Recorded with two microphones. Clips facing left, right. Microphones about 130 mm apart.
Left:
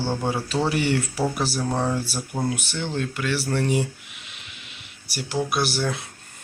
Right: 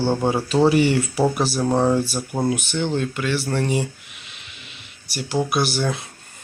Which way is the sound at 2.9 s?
Centre (ahead or behind).